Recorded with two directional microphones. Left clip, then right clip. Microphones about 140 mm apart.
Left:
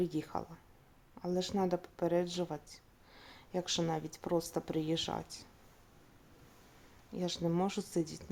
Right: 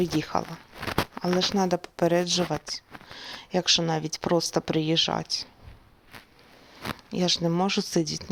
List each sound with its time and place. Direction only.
0.0 s speech: 30° right (ahead or behind)
1.6 s speech: 45° right (ahead or behind); by 5.5 s 25° right (ahead or behind)
7.1 s speech: 35° right (ahead or behind)